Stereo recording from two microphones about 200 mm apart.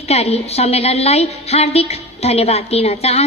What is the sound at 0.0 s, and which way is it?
A woman's voice, 30° left (ahead or behind).